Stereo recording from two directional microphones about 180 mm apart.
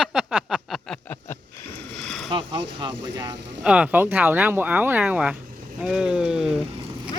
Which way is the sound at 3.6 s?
5° right (ahead or behind).